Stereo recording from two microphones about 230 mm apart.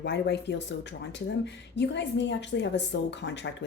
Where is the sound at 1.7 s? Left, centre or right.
Left.